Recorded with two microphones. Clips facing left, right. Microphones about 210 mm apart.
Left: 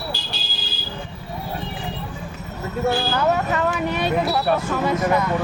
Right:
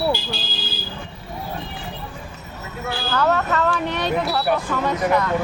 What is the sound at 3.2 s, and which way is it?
Speech, 15° left (ahead or behind).